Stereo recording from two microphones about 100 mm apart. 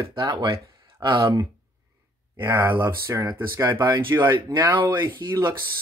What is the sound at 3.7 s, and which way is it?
Speech, 45° right (ahead or behind).